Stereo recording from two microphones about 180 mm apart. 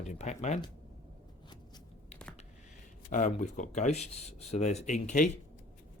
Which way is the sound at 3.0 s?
45° left (ahead or behind).